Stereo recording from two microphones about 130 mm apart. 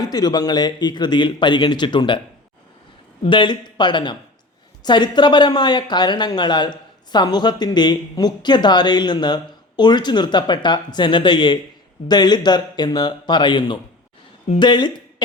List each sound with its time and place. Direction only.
0.0 s speech: 30° left (ahead or behind)
3.2 s speech: 40° left (ahead or behind)